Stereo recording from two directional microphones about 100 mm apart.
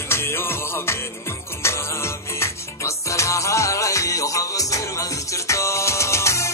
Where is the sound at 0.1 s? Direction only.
25° left (ahead or behind).